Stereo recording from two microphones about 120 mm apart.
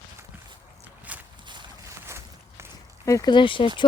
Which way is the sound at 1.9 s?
25° right (ahead or behind).